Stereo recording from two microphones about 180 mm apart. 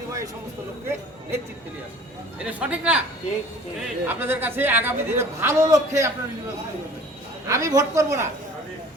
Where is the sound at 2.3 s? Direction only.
5° right (ahead or behind).